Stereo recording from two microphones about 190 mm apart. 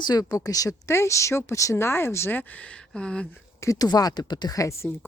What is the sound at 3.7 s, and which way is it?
Speech, 20° left (ahead or behind).